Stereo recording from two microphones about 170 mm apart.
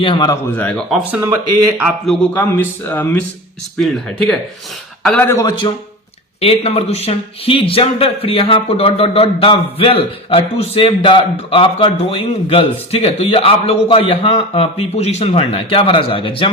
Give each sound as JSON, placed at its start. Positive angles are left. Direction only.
{"t": 0.0, "sound": "speech", "side_deg": 25}
{"t": 0.5, "sound": "speech", "side_deg": 10}
{"t": 2.3, "sound": "speech", "side_deg": 10}
{"t": 3.8, "sound": "a man's voice", "side_deg": 0}